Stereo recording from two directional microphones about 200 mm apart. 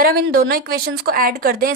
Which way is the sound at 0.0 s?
50° right (ahead or behind).